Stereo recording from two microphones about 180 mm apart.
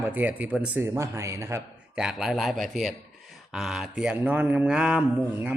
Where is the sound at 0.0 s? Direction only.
10° right (ahead or behind).